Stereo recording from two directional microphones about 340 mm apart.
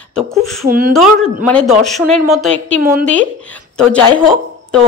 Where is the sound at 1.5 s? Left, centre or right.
Centre.